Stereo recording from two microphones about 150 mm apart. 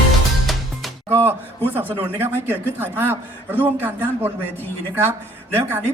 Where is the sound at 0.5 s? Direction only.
Centre (ahead or behind).